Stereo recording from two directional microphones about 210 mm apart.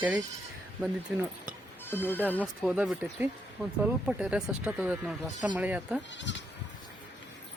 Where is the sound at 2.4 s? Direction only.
5° right (ahead or behind).